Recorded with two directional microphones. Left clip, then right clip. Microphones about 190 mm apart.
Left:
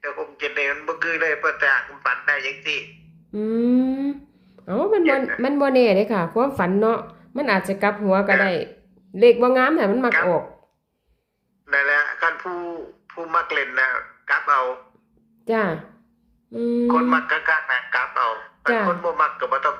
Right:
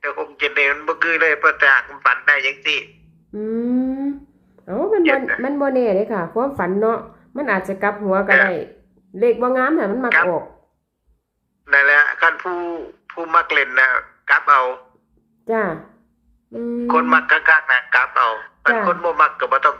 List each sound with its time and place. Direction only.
0.0 s a man's voice: 5° right (ahead or behind)
3.3 s a sound: centre (ahead or behind)
4.6 s a sound: 10° left (ahead or behind)
5.0 s speech: 5° right (ahead or behind)
5.4 s speech: 10° left (ahead or behind)
11.6 s speech: 5° right (ahead or behind)